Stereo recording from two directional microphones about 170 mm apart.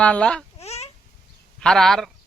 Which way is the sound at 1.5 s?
5° left (ahead or behind).